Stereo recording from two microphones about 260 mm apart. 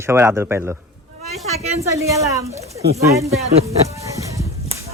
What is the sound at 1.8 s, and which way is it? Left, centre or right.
Speech, centre.